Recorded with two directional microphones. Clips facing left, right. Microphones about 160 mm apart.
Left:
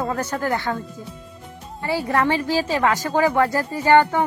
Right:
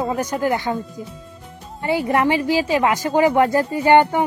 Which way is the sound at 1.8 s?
20° right (ahead or behind).